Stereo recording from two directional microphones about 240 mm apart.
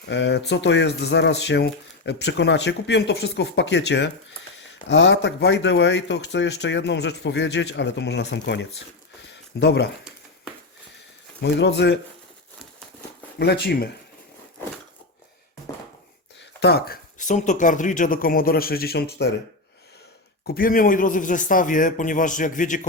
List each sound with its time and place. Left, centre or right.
0.0 s speech: left
9.3 s a sound: left
11.3 s speech: left
13.4 s speech: left
16.6 s speech: left
20.5 s speech: left